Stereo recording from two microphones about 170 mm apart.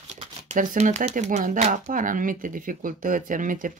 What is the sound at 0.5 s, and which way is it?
Speech, 45° right (ahead or behind).